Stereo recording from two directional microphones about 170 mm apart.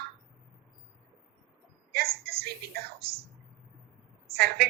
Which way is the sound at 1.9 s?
65° right (ahead or behind).